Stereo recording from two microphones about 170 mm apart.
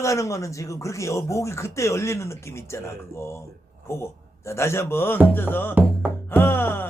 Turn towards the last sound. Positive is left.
turn(degrees=10)  # may be behind; listen again after turning